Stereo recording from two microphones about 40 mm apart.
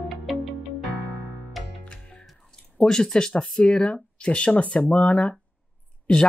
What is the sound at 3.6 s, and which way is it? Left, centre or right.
Speech, left.